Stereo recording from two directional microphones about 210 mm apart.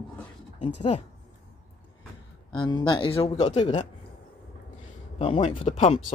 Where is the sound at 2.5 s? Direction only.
20° left (ahead or behind).